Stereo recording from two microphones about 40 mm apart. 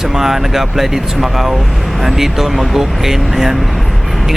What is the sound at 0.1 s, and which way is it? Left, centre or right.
Speech, centre.